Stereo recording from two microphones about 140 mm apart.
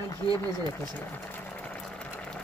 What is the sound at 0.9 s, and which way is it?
Sewing machine, 15° left (ahead or behind).